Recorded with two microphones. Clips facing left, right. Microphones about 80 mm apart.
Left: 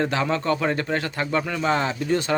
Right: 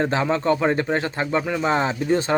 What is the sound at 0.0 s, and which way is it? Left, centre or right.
Speech, right.